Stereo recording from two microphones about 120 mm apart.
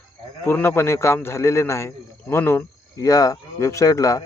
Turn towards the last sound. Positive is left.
turn(degrees=30)  # may be behind; listen again after turning